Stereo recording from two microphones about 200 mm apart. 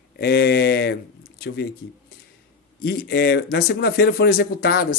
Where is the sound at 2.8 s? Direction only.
50° left (ahead or behind).